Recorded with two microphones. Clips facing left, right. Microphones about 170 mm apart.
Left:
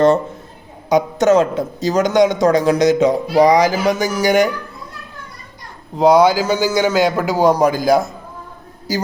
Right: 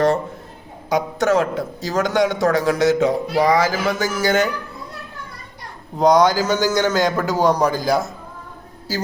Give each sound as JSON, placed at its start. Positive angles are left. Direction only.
{"t": 0.9, "sound": "a man's voice", "side_deg": 20}
{"t": 6.0, "sound": "a man's voice", "side_deg": 10}